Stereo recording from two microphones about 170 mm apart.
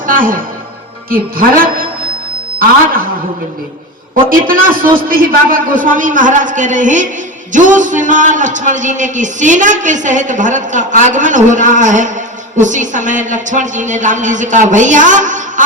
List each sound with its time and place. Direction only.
0.0 s music: 55° right (ahead or behind)
1.1 s a man's voice: 60° right (ahead or behind)
4.3 s a man's voice: 55° right (ahead or behind)